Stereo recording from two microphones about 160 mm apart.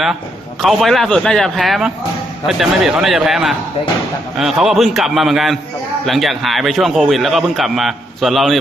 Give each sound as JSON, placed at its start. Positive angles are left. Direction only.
{"t": 0.6, "sound": "a man's voice", "side_deg": 0}